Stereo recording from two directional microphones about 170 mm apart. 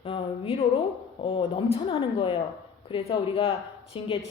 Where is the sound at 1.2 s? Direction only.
30° left (ahead or behind).